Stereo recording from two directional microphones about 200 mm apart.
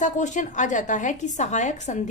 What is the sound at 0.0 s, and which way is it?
A woman's voice, 40° left (ahead or behind).